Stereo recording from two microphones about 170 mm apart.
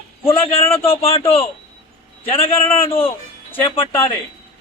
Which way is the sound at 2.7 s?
30° left (ahead or behind).